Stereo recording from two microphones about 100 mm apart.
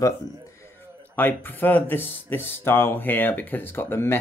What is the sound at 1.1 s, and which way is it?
Speech, 20° left (ahead or behind).